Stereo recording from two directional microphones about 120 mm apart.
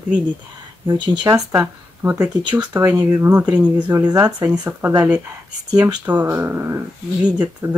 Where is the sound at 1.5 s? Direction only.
20° right (ahead or behind).